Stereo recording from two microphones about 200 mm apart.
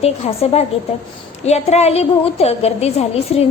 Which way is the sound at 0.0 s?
30° left (ahead or behind).